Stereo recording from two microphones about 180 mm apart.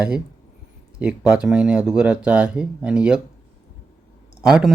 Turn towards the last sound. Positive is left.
turn(degrees=-5)  # may be behind; listen again after turning